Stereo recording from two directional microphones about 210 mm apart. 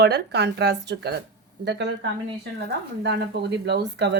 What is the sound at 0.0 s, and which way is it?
A woman's voice, 50° right (ahead or behind).